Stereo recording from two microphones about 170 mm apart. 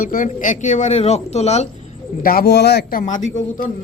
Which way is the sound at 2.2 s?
65° left (ahead or behind).